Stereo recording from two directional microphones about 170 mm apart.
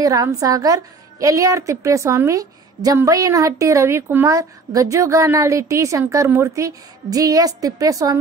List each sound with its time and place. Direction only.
0.0 s a woman's voice: 20° right (ahead or behind)